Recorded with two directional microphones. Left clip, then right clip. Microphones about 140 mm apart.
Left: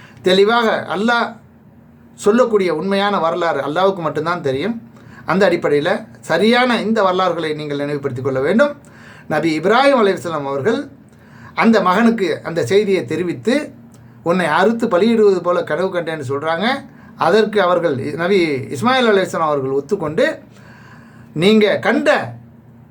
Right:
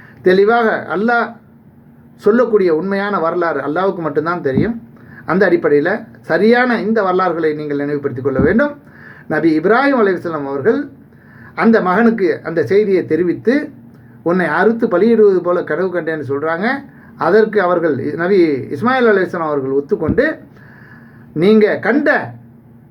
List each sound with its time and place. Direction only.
0.2 s speech: 45° left (ahead or behind)
2.3 s speech: 40° left (ahead or behind)
21.3 s speech: 45° left (ahead or behind)